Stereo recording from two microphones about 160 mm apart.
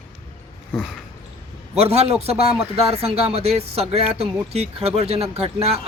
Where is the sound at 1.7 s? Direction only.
40° right (ahead or behind).